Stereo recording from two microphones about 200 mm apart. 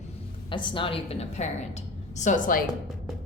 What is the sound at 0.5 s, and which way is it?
A woman's voice, 25° left (ahead or behind).